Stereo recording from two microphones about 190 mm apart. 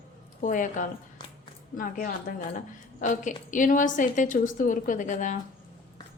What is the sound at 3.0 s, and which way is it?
A woman's voice, 40° left (ahead or behind).